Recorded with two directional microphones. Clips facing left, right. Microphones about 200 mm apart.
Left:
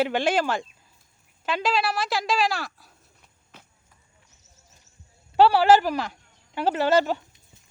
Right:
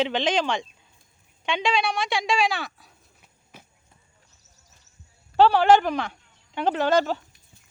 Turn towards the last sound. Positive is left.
turn(degrees=10)  # may be behind; listen again after turning